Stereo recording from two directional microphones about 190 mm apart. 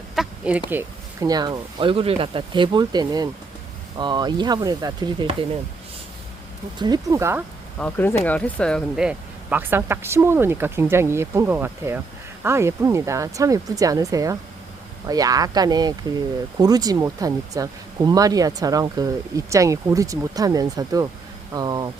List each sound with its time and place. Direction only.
0.2 s duck: 5° right (ahead or behind)
0.7 s speech: 15° right (ahead or behind)
6.7 s speech: 20° right (ahead or behind)
7.8 s speech: 10° left (ahead or behind); by 21.8 s 20° right (ahead or behind)